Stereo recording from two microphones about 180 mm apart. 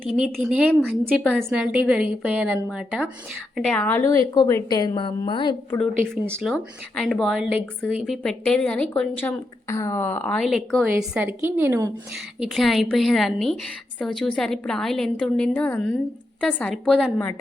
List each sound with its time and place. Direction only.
0.0 s a woman's voice: centre (ahead or behind)
3.8 s a woman's voice: 15° left (ahead or behind)
6.0 s a woman's voice: 15° right (ahead or behind)
6.4 s a woman's voice: centre (ahead or behind)
12.4 s speech: centre (ahead or behind)